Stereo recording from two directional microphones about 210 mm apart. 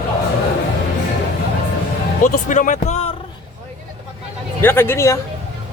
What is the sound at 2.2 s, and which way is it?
Speech, 40° left (ahead or behind).